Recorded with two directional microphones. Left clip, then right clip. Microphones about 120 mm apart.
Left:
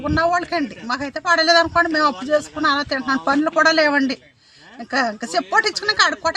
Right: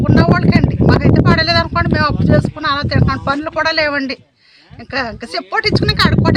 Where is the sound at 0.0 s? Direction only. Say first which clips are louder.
Right 4 dB; 45° right (ahead or behind).